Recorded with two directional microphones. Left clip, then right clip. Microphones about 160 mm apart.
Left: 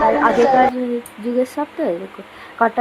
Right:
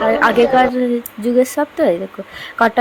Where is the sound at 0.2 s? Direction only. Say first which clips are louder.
Right 1 dB; 10° right (ahead or behind).